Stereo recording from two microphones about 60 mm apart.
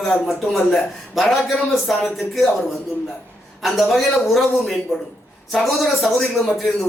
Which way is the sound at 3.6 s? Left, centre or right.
Centre.